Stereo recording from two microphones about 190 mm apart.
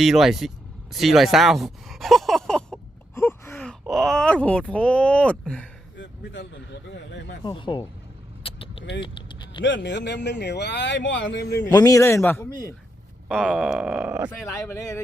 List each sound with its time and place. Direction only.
0.0 s speech: centre (ahead or behind)
6.0 s speech: 70° left (ahead or behind)
7.4 s speech: 25° left (ahead or behind)
8.4 s vehicle: 30° left (ahead or behind)
9.0 s a sound: 25° left (ahead or behind)
9.6 s speech: 70° left (ahead or behind)
11.7 s speech: 20° left (ahead or behind)
13.2 s speech: 5° right (ahead or behind)
14.3 s speech: 15° left (ahead or behind)